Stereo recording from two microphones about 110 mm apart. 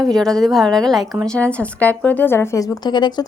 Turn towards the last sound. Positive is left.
turn(degrees=40)  # may be behind; listen again after turning